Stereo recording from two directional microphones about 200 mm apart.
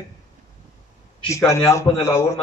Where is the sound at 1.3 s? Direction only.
15° left (ahead or behind).